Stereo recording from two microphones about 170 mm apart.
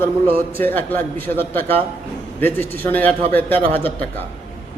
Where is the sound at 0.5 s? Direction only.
10° left (ahead or behind).